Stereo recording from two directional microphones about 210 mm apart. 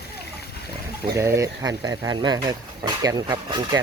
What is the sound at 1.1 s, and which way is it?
Speech, 15° right (ahead or behind).